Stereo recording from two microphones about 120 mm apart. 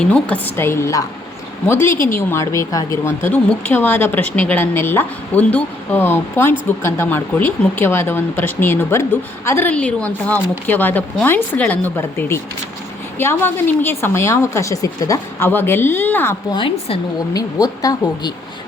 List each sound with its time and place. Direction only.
0.0 s a woman's voice: 10° left (ahead or behind); by 3.1 s 25° left (ahead or behind)
3.2 s a woman's voice: 15° left (ahead or behind)
16.5 s a woman's voice: 45° left (ahead or behind)
17.3 s speech: 30° left (ahead or behind)